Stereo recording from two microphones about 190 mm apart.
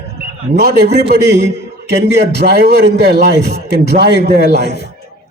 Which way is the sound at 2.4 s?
60° right (ahead or behind).